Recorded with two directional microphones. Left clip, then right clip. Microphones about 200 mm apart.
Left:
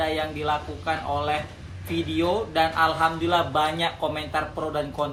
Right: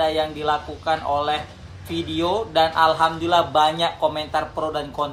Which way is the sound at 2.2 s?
15° right (ahead or behind).